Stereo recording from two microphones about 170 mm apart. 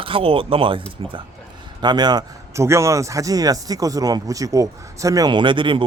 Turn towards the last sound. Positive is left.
turn(degrees=-30)  # may be behind; listen again after turning